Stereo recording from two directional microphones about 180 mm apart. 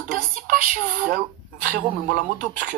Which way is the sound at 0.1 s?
50° right (ahead or behind).